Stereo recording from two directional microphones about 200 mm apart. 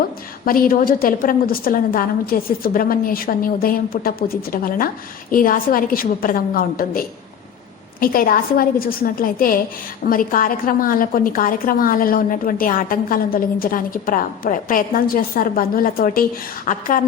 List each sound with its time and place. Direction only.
0.4 s a woman's voice: 45° left (ahead or behind)
8.0 s a woman's voice: 45° left (ahead or behind)